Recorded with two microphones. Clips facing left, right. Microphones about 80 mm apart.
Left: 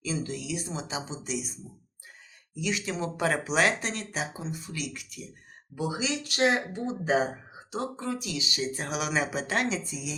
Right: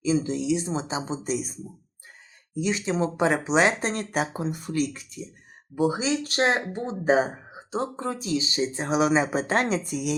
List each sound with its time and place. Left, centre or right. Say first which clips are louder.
0.0 s speech: right 9 dB; right
2.6 s speech: right 6 dB; right
5.7 s speech: right 7 dB; right